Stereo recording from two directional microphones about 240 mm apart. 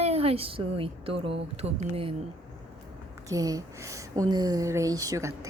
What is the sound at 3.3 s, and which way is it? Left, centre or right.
Speech, centre.